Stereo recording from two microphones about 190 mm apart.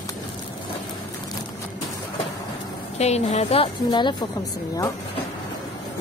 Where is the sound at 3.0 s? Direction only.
35° left (ahead or behind).